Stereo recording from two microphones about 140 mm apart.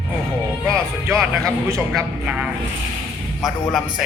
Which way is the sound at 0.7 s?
20° right (ahead or behind).